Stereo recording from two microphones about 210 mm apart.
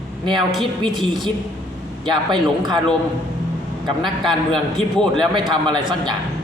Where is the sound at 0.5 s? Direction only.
Centre (ahead or behind).